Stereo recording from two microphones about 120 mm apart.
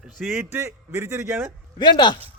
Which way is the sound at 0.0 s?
5° right (ahead or behind).